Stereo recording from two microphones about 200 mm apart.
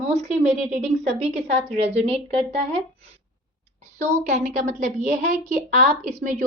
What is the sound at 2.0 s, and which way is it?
Speech, 30° right (ahead or behind).